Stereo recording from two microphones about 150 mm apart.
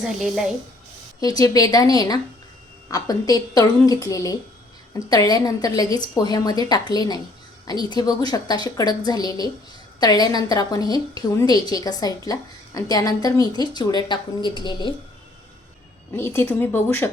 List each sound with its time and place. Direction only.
0.0 s speech: 5° right (ahead or behind)
1.2 s a woman's voice: 25° left (ahead or behind)
16.1 s speech: 15° left (ahead or behind)